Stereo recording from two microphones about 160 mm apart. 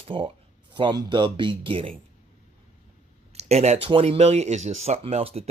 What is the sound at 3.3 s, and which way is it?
Speech, 45° right (ahead or behind).